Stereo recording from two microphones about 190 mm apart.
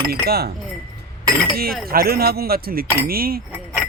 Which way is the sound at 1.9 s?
55° right (ahead or behind).